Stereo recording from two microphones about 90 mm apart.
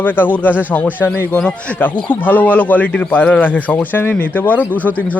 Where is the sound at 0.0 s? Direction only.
20° left (ahead or behind).